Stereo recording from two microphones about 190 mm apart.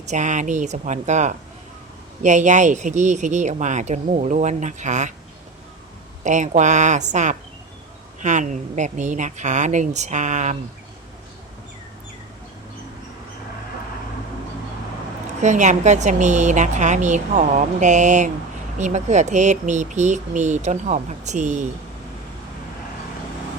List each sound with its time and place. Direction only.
0.0 s speech: 40° right (ahead or behind)
6.2 s speech: 40° right (ahead or behind)
15.4 s speech: 40° right (ahead or behind)